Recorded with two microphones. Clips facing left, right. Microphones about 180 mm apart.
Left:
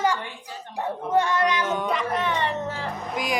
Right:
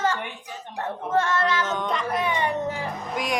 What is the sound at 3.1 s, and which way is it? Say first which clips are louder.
Speech: even; centre (ahead or behind).